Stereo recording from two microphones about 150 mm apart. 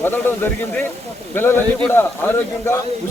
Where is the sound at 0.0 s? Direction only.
15° left (ahead or behind).